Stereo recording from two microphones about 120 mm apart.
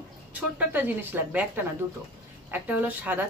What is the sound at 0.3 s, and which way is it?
A woman's voice, 15° right (ahead or behind).